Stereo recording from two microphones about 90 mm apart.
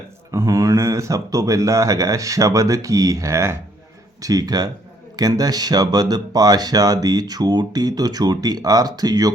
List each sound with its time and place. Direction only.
0.3 s speech: 35° right (ahead or behind)
4.2 s speech: 45° right (ahead or behind)